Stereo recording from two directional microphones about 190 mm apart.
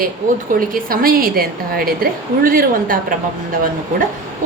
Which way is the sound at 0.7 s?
50° right (ahead or behind).